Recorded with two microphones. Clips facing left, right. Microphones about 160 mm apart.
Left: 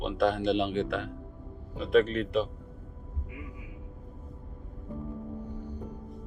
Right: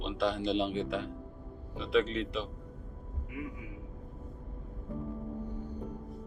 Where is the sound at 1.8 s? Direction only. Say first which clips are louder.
Left 5 dB; 55° left (ahead or behind).